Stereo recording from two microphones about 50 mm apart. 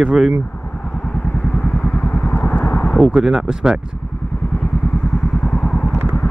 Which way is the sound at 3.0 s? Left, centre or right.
Centre.